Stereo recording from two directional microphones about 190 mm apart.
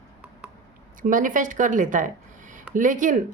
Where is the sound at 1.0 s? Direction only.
45° right (ahead or behind).